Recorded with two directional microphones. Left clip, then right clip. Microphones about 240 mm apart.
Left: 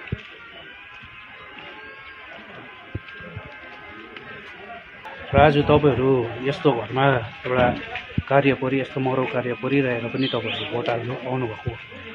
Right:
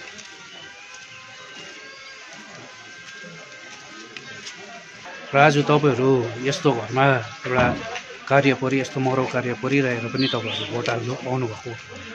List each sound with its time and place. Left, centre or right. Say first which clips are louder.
5.3 s speech: even; right